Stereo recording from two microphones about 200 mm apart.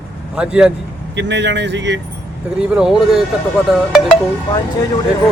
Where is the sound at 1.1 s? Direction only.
60° right (ahead or behind).